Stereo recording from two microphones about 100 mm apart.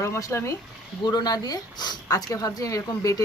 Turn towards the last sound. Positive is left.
turn(degrees=35)  # may be behind; listen again after turning